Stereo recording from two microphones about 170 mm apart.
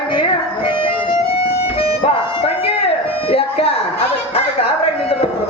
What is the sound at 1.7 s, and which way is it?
Music, 35° left (ahead or behind).